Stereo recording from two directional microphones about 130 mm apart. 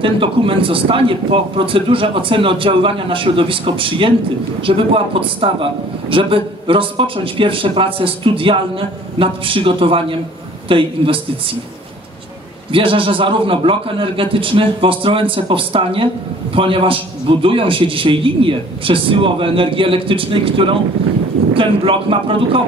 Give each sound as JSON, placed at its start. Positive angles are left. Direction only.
{"t": 0.0, "sound": "a man's voice", "side_deg": -40}
{"t": 12.7, "sound": "a man's voice", "side_deg": -40}